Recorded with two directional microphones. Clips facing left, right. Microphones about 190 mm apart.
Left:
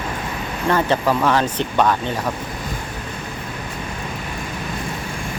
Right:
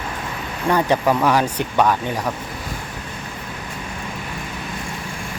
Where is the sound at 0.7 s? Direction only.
15° right (ahead or behind).